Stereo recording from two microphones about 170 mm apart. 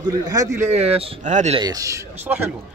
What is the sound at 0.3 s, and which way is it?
Speech, 20° right (ahead or behind).